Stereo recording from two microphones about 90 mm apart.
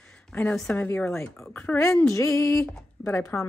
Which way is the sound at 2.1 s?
30° left (ahead or behind).